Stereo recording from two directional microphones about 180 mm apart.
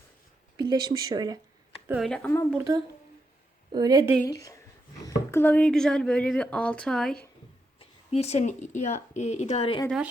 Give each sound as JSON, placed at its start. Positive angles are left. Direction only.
{"t": 0.5, "sound": "speech", "side_deg": -25}
{"t": 1.9, "sound": "speech", "side_deg": 0}
{"t": 2.6, "sound": "a woman's voice", "side_deg": -20}
{"t": 4.3, "sound": "a woman's voice", "side_deg": 20}
{"t": 7.8, "sound": "speech", "side_deg": 35}